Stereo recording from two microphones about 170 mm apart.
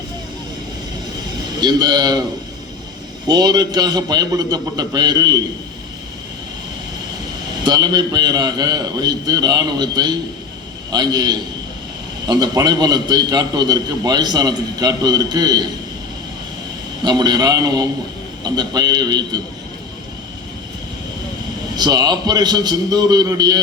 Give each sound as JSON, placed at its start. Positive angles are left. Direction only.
{"t": 1.6, "sound": "a man's voice", "side_deg": -25}
{"t": 3.2, "sound": "a man's voice", "side_deg": -25}
{"t": 7.6, "sound": "a man's voice", "side_deg": -25}
{"t": 17.0, "sound": "a man's voice", "side_deg": -25}
{"t": 21.8, "sound": "a man's voice", "side_deg": -25}